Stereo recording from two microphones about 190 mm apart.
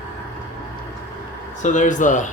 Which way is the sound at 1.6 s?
40° left (ahead or behind).